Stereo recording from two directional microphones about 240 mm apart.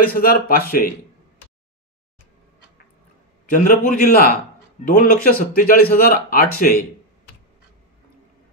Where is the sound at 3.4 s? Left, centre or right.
Left.